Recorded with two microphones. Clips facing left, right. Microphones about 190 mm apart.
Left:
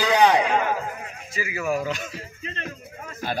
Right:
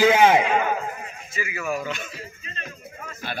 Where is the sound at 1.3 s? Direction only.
35° left (ahead or behind).